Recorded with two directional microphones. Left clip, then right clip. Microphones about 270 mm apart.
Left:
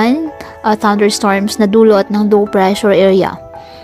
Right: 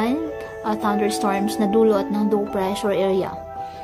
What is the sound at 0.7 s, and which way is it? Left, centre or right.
A woman's voice, left.